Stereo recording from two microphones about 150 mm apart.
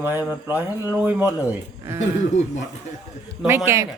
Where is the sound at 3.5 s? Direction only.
15° right (ahead or behind).